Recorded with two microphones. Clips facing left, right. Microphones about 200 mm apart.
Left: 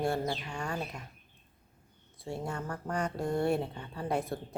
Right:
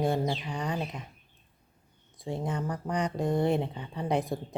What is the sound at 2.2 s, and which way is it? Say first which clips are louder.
Speech: right 4 dB; 15° right (ahead or behind).